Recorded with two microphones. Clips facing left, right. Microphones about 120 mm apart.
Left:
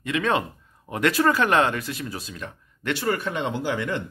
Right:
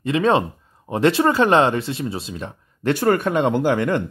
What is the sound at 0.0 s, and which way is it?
Speech, 30° right (ahead or behind).